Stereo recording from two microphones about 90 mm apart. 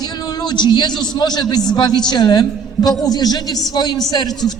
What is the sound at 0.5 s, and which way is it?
A man's voice, 55° left (ahead or behind).